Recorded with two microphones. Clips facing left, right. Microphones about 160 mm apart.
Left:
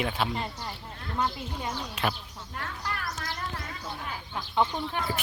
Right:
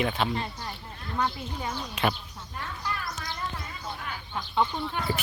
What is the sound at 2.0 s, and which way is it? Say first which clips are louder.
Speech: right 3 dB; centre (ahead or behind).